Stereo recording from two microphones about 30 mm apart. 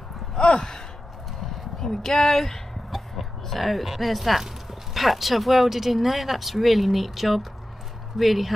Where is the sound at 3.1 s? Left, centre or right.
Centre.